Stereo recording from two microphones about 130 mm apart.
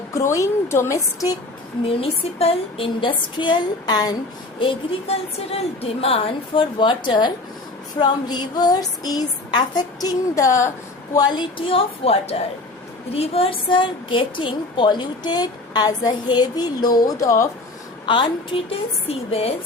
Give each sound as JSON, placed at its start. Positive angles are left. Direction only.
{"t": 0.1, "sound": "a woman's voice", "side_deg": 20}
{"t": 2.0, "sound": "a woman's voice", "side_deg": 45}
{"t": 4.6, "sound": "a woman's voice", "side_deg": 45}
{"t": 18.0, "sound": "a woman's voice", "side_deg": 40}
{"t": 19.0, "sound": "a woman's voice", "side_deg": 50}